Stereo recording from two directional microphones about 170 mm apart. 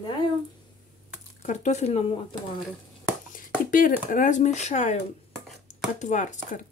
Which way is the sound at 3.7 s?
50° left (ahead or behind).